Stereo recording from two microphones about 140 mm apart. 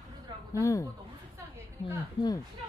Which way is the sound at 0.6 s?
20° left (ahead or behind).